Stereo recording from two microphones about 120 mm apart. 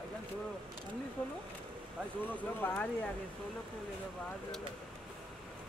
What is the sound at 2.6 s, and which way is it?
Speech, 10° left (ahead or behind).